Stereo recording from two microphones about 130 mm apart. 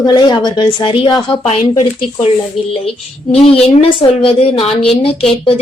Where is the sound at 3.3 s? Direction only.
50° left (ahead or behind).